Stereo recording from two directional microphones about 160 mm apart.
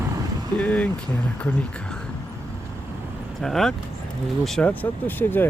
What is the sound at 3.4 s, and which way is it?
Speech, centre (ahead or behind).